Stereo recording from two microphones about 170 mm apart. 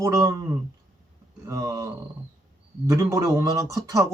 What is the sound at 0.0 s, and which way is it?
Speech, 20° right (ahead or behind).